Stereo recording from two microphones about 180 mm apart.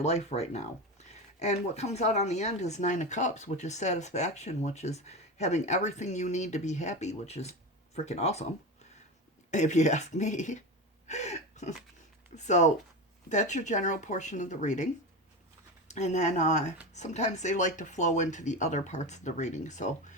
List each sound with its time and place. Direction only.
0.0 s speech: 40° left (ahead or behind)
9.5 s speech: 40° left (ahead or behind)
11.1 s gasp: 40° left (ahead or behind)
12.4 s speech: 40° left (ahead or behind)
15.9 s speech: 40° left (ahead or behind)